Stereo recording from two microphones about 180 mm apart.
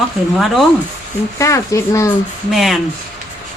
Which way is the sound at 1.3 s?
15° left (ahead or behind).